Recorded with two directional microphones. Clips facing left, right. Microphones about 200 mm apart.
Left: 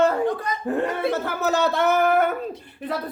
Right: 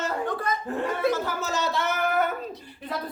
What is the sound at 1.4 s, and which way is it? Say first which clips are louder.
Speech: left 7 dB; 60° left (ahead or behind).